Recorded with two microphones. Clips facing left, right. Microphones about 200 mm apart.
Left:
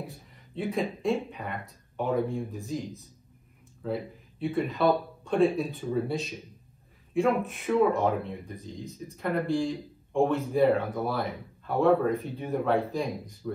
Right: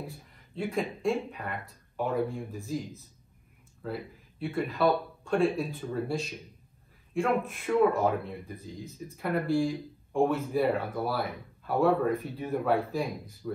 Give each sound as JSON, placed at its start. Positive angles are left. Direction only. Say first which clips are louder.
{"t": 0.6, "sound": "speech", "louder": "left 2 dB", "side_deg": 0}
{"t": 3.8, "sound": "speech", "louder": "left 4 dB", "side_deg": 0}